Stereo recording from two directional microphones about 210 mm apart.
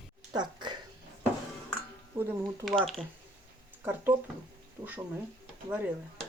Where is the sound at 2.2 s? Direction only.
10° right (ahead or behind).